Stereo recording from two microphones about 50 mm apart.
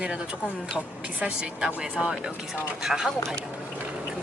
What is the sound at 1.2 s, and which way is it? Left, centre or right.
Speech, centre.